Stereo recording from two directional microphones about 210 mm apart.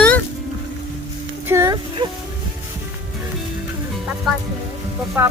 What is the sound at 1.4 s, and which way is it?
Speech, 15° right (ahead or behind).